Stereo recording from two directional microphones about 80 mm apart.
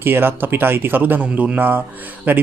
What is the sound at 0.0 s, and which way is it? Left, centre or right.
A man's voice, right.